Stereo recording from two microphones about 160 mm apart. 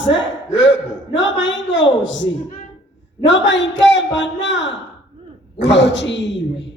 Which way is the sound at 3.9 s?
90° left.